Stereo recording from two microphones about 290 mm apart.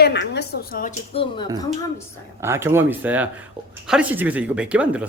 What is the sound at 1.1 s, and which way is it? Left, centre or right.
Speech, centre.